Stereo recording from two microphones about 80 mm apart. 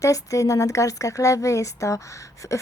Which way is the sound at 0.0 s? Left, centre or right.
Left.